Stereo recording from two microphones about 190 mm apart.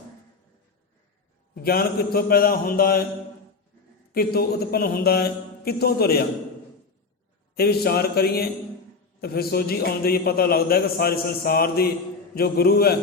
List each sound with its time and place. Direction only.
1.5 s a man's voice: 50° left (ahead or behind)
4.1 s speech: 55° left (ahead or behind)
7.5 s a man's voice: 55° left (ahead or behind)